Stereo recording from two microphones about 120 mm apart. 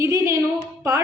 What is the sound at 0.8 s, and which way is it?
Music, 25° right (ahead or behind).